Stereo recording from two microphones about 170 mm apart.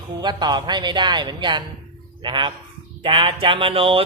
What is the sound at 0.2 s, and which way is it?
Speech, 25° right (ahead or behind).